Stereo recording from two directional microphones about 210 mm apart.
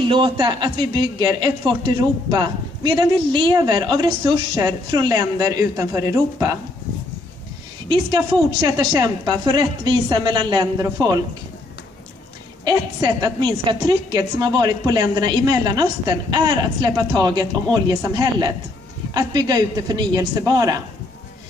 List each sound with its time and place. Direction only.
0.1 s speech: 20° right (ahead or behind)
7.9 s speech: 20° right (ahead or behind)
12.6 s a woman's voice: 20° right (ahead or behind)